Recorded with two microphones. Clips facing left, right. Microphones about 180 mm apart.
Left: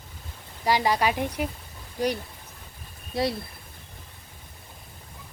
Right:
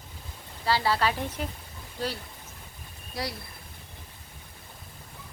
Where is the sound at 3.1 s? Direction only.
25° left (ahead or behind).